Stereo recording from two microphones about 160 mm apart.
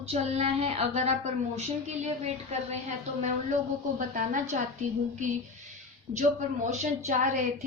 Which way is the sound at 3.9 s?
55° right (ahead or behind).